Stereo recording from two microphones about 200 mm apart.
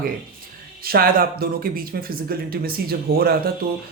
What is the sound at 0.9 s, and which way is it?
Speech, 50° right (ahead or behind).